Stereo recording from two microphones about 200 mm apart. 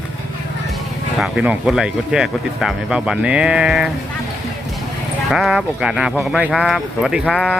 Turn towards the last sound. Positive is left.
turn(degrees=5)  # may be behind; listen again after turning